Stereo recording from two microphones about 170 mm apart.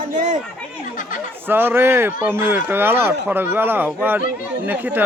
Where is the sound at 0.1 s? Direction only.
45° right (ahead or behind).